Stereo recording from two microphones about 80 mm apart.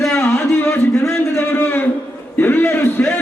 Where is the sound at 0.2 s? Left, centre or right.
Left.